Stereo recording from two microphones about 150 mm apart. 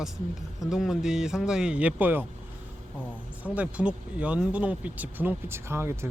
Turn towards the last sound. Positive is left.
turn(degrees=-15)  # may be behind; listen again after turning